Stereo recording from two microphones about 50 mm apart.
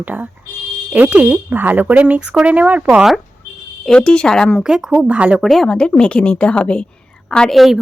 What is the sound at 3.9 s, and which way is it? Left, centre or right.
Speech, centre.